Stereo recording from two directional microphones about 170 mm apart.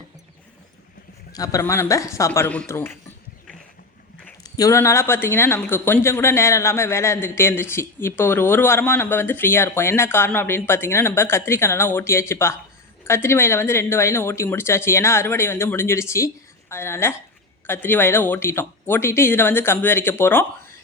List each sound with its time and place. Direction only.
1.3 s speech: 20° left (ahead or behind)
4.4 s speech: 20° left (ahead or behind)